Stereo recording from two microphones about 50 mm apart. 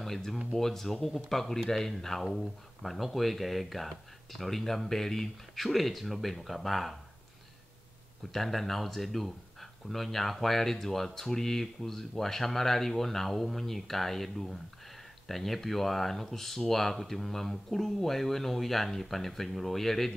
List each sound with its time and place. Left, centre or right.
0.0 s speech: centre
8.3 s speech: centre